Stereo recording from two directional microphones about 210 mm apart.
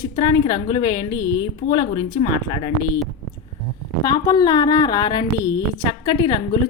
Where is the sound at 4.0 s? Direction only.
20° left (ahead or behind).